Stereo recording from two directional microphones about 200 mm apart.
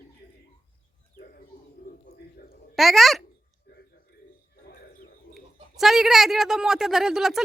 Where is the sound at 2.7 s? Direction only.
Centre (ahead or behind).